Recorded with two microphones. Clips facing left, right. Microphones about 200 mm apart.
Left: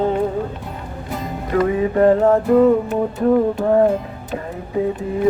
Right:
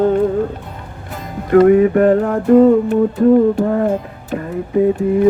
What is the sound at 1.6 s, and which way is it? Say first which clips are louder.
Speech: right 8 dB; 60° right (ahead or behind).